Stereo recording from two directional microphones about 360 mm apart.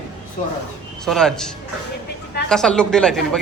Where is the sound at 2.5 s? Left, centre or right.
Centre.